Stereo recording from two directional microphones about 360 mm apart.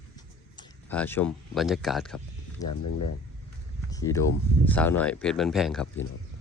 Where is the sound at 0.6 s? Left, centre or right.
Centre.